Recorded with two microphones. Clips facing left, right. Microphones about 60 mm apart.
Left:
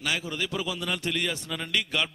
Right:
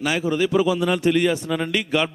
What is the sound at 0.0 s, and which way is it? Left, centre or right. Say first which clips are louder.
A man's voice: right 9 dB; centre.